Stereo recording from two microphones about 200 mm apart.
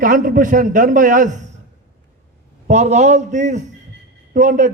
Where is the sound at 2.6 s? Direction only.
35° right (ahead or behind).